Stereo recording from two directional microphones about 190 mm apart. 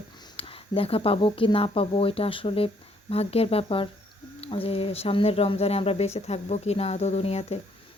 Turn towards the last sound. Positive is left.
turn(degrees=35)  # may be behind; listen again after turning